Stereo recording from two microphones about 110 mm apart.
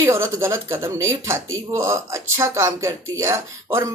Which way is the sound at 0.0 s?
25° right (ahead or behind).